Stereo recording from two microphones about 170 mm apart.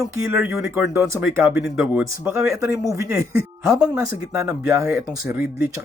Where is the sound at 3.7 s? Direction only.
5° right (ahead or behind).